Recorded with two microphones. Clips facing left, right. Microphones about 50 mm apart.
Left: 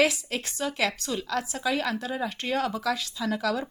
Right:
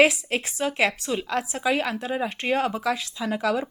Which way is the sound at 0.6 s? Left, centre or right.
Right.